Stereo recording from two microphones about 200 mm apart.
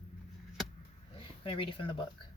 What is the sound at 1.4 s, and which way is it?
Speech, 25° left (ahead or behind).